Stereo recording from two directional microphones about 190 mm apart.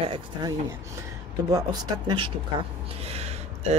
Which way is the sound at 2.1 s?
25° right (ahead or behind).